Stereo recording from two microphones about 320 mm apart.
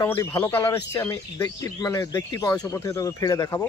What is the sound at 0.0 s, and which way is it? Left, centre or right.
Speech, centre.